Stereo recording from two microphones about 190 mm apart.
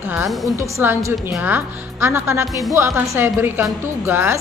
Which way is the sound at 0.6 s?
15° right (ahead or behind).